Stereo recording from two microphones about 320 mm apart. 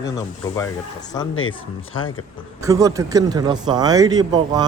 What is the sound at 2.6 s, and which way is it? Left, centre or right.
Speech, centre.